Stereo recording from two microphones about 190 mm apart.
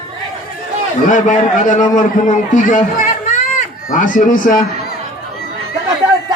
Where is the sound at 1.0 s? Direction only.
40° left (ahead or behind).